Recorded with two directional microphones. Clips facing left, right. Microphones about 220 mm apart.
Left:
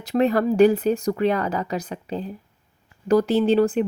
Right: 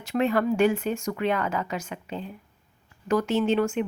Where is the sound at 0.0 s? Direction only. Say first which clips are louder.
Left 4 dB; 35° left (ahead or behind).